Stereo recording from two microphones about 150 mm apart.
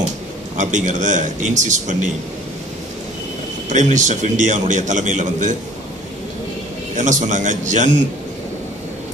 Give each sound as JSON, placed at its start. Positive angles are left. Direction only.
{"t": 0.6, "sound": "a man's voice", "side_deg": -55}
{"t": 3.6, "sound": "a man's voice", "side_deg": -55}
{"t": 7.0, "sound": "a man's voice", "side_deg": -55}